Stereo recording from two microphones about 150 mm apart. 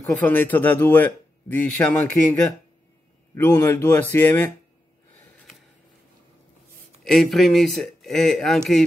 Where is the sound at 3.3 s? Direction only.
15° left (ahead or behind).